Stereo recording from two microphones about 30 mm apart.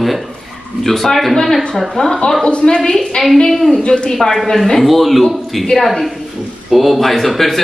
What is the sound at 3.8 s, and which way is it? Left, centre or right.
Speech, left.